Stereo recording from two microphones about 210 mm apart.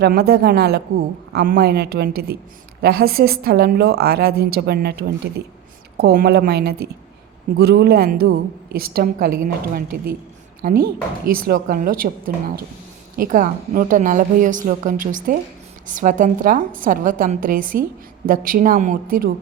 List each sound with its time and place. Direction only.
0.0 s a woman's voice: 50° right (ahead or behind)